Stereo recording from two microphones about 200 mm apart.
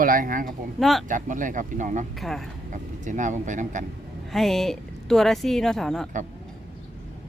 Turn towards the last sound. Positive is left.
turn(degrees=0)  # may be behind; listen again after turning